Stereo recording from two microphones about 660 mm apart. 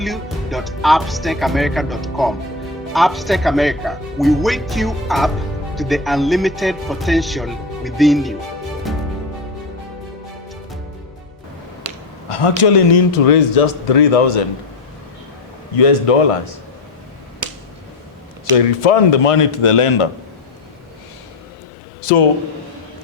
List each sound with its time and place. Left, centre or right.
0.0 s speech: centre
12.3 s a man's voice: left
15.7 s a man's voice: left
18.5 s a man's voice: left